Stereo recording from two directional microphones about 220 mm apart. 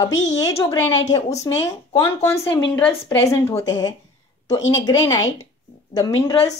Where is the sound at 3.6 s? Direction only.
15° left (ahead or behind).